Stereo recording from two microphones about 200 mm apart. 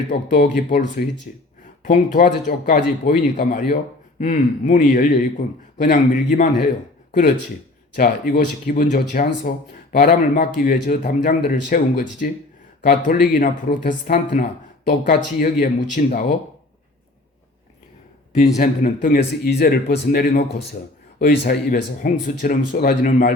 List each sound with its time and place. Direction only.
0.3 s speech: 50° left (ahead or behind)
4.2 s a man's voice: 40° left (ahead or behind)
7.9 s speech: 45° left (ahead or behind)
18.5 s a man's voice: 35° left (ahead or behind)
19.0 s speech: 50° left (ahead or behind)